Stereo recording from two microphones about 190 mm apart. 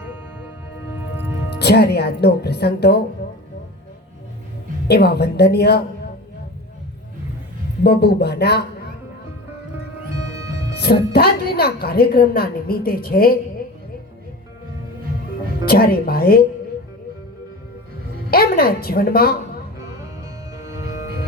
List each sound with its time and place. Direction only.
1.5 s speech: 60° left (ahead or behind)
4.9 s speech: 60° left (ahead or behind)
7.9 s speech: 60° left (ahead or behind)
10.8 s a woman's voice: 55° left (ahead or behind)
15.6 s a woman's voice: 55° left (ahead or behind)
18.3 s a woman's voice: 50° left (ahead or behind)